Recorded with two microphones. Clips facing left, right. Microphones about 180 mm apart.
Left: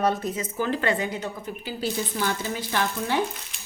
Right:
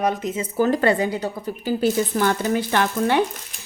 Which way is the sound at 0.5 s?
40° right (ahead or behind).